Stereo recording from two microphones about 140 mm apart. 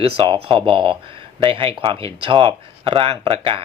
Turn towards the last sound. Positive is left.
turn(degrees=-40)  # may be behind; listen again after turning